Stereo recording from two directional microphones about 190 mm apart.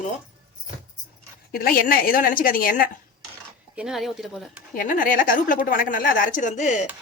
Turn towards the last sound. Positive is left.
turn(degrees=40)  # may be behind; listen again after turning